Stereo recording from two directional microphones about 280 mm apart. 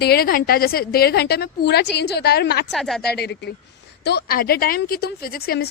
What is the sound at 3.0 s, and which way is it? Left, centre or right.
A woman's voice, left.